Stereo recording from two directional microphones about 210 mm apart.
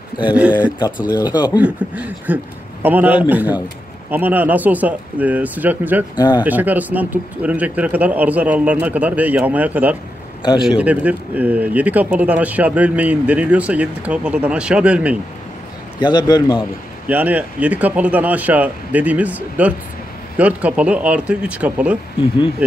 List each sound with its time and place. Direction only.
0.2 s speech: 5° right (ahead or behind)
1.1 s a man's voice: 20° left (ahead or behind)
1.6 s speech: 10° right (ahead or behind)
6.1 s a man's voice: 20° left (ahead or behind)
6.4 s speech: 10° right (ahead or behind)
16.0 s a man's voice: 20° left (ahead or behind)
17.1 s speech: 10° right (ahead or behind)